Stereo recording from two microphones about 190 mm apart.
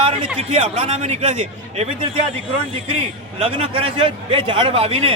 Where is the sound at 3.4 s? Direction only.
30° right (ahead or behind).